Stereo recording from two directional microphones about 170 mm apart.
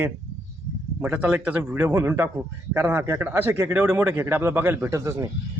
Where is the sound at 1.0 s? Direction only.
10° right (ahead or behind).